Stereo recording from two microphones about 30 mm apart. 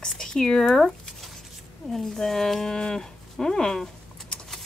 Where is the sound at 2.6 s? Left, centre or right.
Left.